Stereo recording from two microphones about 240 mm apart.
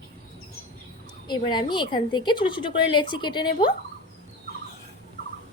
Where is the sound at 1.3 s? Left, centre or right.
Centre.